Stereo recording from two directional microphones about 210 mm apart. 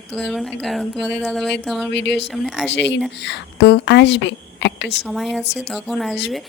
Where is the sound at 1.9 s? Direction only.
55° left (ahead or behind).